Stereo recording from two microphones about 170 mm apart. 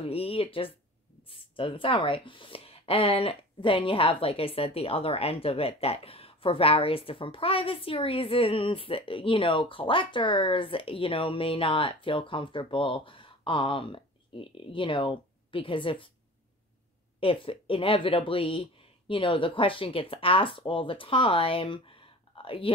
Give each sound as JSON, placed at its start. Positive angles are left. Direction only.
{"t": 0.0, "sound": "speech", "side_deg": 35}
{"t": 17.2, "sound": "speech", "side_deg": 30}